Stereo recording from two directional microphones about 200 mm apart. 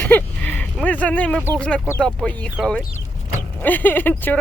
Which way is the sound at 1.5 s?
5° left (ahead or behind).